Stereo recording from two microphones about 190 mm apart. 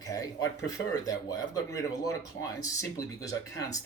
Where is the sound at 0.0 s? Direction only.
20° left (ahead or behind).